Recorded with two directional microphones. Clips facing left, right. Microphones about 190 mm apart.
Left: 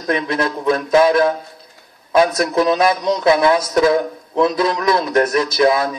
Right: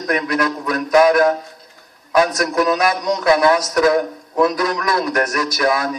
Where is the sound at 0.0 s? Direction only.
25° left (ahead or behind).